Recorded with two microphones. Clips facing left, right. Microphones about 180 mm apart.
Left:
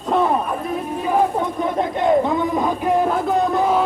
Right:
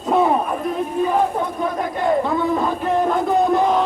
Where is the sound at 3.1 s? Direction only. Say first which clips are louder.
Right 2 dB; 5° left (ahead or behind).